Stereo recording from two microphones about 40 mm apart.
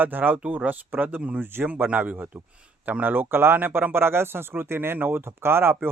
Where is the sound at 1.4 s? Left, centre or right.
Right.